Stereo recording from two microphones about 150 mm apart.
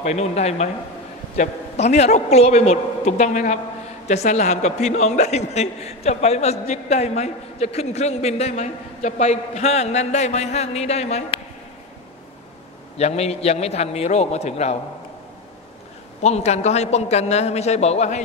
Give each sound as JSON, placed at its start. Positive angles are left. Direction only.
{"t": 0.0, "sound": "a man's voice", "side_deg": 50}
{"t": 12.9, "sound": "a man's voice", "side_deg": 45}
{"t": 16.2, "sound": "a man's voice", "side_deg": 45}